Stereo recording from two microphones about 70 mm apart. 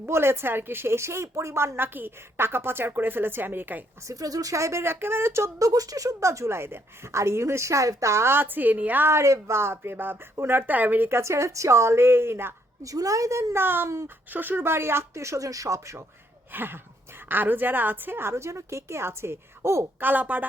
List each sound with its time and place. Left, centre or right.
0.1 s a woman's voice: right
4.0 s speech: right
9.0 s a woman's voice: right
11.2 s a woman's voice: right
12.8 s a woman's voice: right
13.5 s a woman's voice: right
14.3 s a woman's voice: right
16.5 s a woman's voice: right
20.0 s speech: right